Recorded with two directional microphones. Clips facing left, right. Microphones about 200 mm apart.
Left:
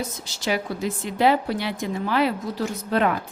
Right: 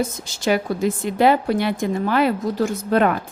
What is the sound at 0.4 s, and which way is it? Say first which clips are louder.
A woman's voice: right 6 dB; 50° right (ahead or behind).